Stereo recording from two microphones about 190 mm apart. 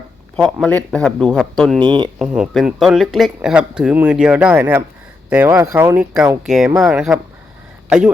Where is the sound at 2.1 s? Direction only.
5° right (ahead or behind).